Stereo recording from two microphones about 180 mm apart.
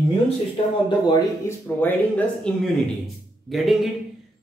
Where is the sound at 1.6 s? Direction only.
10° left (ahead or behind).